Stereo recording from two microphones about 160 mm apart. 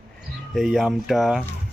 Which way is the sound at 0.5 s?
Centre (ahead or behind).